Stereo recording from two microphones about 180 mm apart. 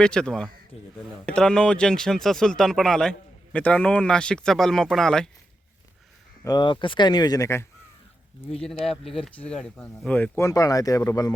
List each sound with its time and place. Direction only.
0.0 s speech: 5° left (ahead or behind)
6.4 s speech: 25° left (ahead or behind)
8.6 s speech: centre (ahead or behind); by 11.3 s 20° left (ahead or behind)